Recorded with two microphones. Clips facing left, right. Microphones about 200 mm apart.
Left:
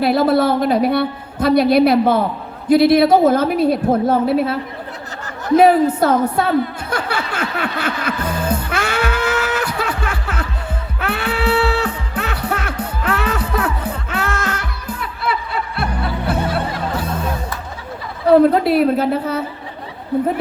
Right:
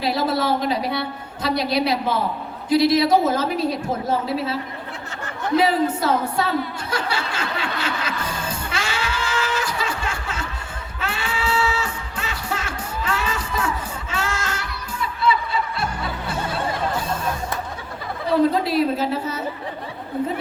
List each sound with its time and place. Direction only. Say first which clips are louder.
0.0 s a woman's voice: left 8 dB; 55° left (ahead or behind)
5.6 s chuckle: left 7 dB; 55° left (ahead or behind)
11.0 s music: left 6 dB; 60° left (ahead or behind)
18.3 s a woman's voice: left 7 dB; 60° left (ahead or behind)